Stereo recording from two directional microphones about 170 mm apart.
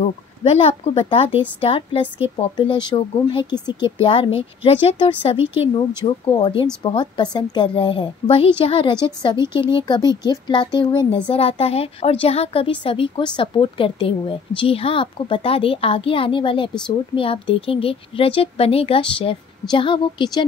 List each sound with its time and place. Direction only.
0.0 s a woman's voice: 35° left (ahead or behind)